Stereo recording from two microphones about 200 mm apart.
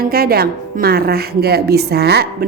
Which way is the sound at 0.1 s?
50° right (ahead or behind).